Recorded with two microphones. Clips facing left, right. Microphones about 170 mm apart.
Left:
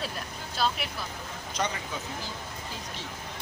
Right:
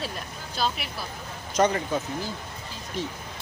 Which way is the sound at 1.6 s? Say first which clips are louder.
Right 9 dB; 50° right (ahead or behind).